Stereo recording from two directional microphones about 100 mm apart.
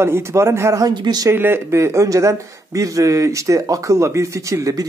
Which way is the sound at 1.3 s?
20° right (ahead or behind).